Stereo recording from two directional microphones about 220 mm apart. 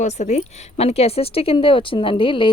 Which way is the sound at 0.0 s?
30° left (ahead or behind).